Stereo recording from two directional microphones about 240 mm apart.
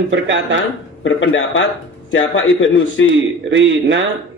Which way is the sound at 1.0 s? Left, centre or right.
Left.